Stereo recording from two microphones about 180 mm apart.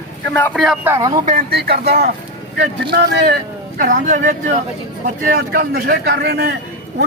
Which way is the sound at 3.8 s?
45° right (ahead or behind).